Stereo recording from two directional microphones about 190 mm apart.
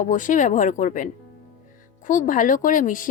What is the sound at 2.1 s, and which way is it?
Speech, 45° left (ahead or behind).